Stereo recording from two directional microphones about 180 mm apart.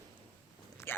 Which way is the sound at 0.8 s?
10° left (ahead or behind).